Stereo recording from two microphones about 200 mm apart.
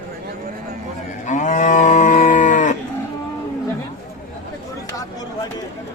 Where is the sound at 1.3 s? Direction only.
40° left (ahead or behind).